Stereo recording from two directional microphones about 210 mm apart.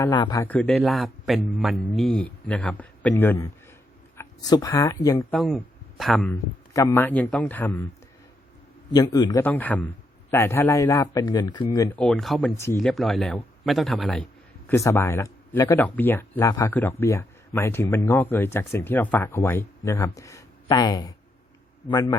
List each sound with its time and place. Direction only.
0.0 s a man's voice: 20° left (ahead or behind)
0.4 s a man's voice: 5° left (ahead or behind)
4.4 s speech: 15° left (ahead or behind)
5.3 s speech: centre (ahead or behind)
6.7 s speech: 15° left (ahead or behind)
8.9 s speech: 20° left (ahead or behind)
11.9 s a man's voice: 5° left (ahead or behind)
14.7 s a man's voice: 10° left (ahead or behind)